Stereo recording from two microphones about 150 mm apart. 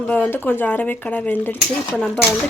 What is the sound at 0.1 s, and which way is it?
Speech, 10° left (ahead or behind).